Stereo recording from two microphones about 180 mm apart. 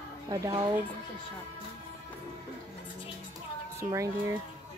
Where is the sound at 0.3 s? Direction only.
20° right (ahead or behind).